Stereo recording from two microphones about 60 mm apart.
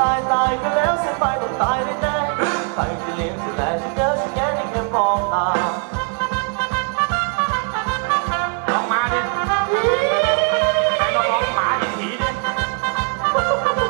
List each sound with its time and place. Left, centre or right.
0.0 s music: centre